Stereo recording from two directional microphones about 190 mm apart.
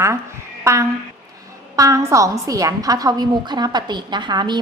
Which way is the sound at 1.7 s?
15° right (ahead or behind).